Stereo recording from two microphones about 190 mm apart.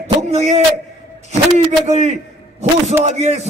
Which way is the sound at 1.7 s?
35° right (ahead or behind).